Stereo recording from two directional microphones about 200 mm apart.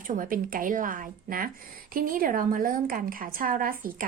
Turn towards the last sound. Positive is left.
turn(degrees=-45)  # may be behind; listen again after turning